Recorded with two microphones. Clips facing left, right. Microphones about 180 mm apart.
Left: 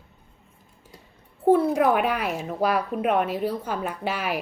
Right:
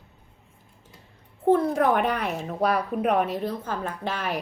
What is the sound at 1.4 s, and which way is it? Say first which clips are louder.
Speech: left 2 dB; 5° left (ahead or behind).